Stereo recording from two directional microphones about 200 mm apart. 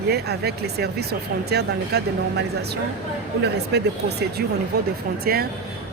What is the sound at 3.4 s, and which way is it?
Speech, 55° right (ahead or behind).